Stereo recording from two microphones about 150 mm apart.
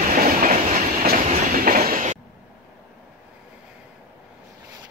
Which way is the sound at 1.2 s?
60° right (ahead or behind).